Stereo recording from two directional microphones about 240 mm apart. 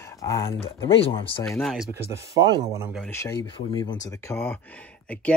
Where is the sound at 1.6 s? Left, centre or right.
Centre.